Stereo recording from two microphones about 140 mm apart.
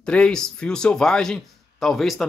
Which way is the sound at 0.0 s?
5° left (ahead or behind).